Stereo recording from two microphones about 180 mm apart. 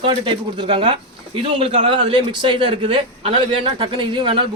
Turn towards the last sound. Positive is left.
turn(degrees=-25)  # may be behind; listen again after turning